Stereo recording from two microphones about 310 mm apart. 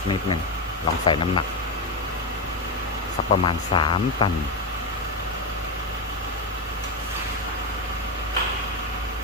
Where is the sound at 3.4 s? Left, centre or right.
Centre.